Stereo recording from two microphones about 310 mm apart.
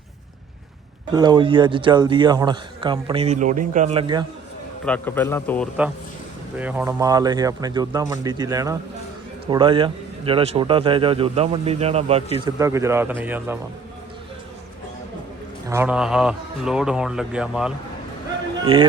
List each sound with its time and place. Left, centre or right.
1.1 s a man's voice: centre
4.9 s a man's voice: centre
15.6 s speech: centre
18.6 s a man's voice: centre